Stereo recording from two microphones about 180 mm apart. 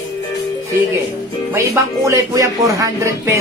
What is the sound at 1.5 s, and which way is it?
Speech, 15° right (ahead or behind).